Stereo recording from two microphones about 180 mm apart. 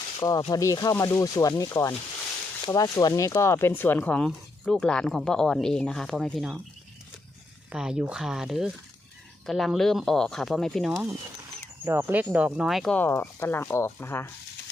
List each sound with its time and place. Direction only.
0.2 s speech: 20° left (ahead or behind); by 6.6 s centre (ahead or behind)
7.7 s speech: 5° right (ahead or behind)
11.9 s speech: 10° right (ahead or behind); by 14.3 s 15° left (ahead or behind)